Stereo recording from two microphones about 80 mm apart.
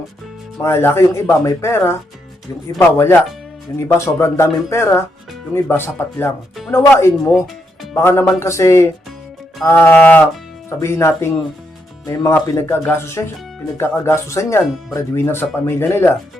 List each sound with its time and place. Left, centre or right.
0.6 s speech: left
7.3 s music: centre
7.9 s speech: left
10.7 s speech: left